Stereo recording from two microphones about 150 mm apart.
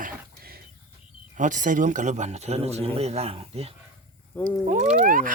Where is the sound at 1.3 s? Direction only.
55° right (ahead or behind); by 3.7 s 40° right (ahead or behind).